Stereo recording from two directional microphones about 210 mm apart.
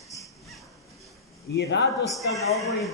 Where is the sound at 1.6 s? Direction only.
55° left (ahead or behind).